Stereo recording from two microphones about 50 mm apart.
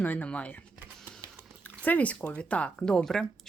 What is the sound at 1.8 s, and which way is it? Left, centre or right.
A woman's voice, left.